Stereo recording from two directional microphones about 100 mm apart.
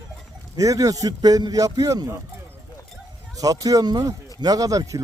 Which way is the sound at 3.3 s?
35° right (ahead or behind).